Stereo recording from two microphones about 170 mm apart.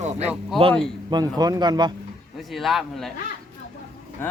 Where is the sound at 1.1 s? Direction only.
25° right (ahead or behind).